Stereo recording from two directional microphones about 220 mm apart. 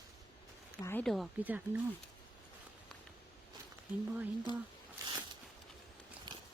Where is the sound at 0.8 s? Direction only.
10° left (ahead or behind); by 1.8 s 5° right (ahead or behind).